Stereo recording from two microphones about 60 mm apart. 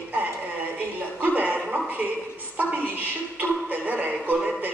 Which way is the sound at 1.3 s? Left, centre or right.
Right.